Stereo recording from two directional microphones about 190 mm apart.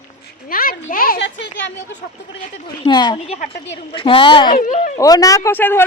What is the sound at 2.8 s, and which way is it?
Speech, 20° left (ahead or behind).